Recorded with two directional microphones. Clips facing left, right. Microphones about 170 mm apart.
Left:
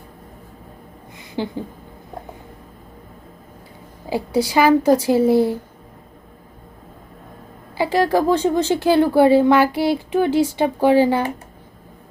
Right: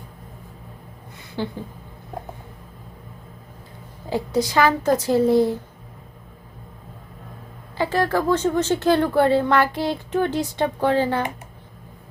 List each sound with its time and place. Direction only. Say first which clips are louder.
1.4 s a woman's voice: left 3 dB; 15° left (ahead or behind)
4.1 s a woman's voice: left 2 dB; 10° left (ahead or behind)
7.8 s a woman's voice: left 4 dB; 15° left (ahead or behind)